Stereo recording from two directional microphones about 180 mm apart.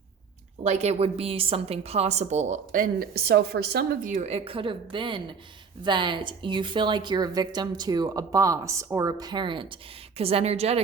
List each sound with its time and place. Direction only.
0.6 s a woman's voice: 40° right (ahead or behind); by 4.1 s 65° right (ahead or behind)
4.1 s a woman's voice: 35° right (ahead or behind)